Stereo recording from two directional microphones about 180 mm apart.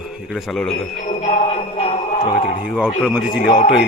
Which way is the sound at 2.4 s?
55° left (ahead or behind).